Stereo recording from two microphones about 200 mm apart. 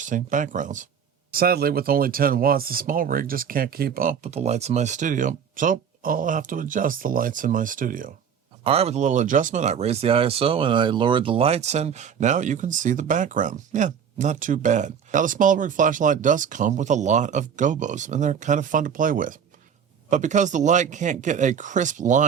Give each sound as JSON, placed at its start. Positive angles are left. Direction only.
{"t": 0.0, "sound": "speech", "side_deg": -40}
{"t": 8.6, "sound": "speech", "side_deg": -30}